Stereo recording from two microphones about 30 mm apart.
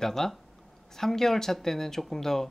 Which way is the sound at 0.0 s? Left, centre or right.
Centre.